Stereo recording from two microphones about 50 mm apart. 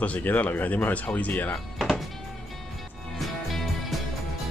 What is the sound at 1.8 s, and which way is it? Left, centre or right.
Music, centre.